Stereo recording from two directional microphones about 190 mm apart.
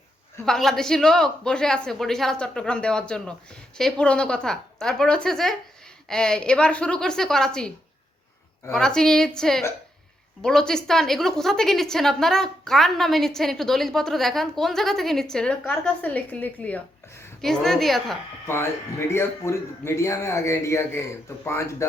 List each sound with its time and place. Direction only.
0.4 s a woman's voice: centre (ahead or behind)
8.7 s a woman's voice: 5° left (ahead or behind)
18.4 s speech: 15° left (ahead or behind)